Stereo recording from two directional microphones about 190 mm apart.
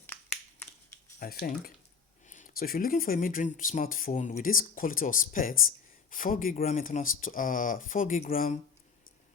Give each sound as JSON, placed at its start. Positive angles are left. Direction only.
{"t": 1.2, "sound": "speech", "side_deg": 50}